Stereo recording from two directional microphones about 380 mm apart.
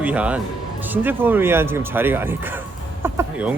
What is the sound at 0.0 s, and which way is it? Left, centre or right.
Speech, centre.